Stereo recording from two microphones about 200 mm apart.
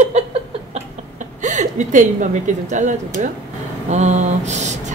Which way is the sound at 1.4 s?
35° right (ahead or behind).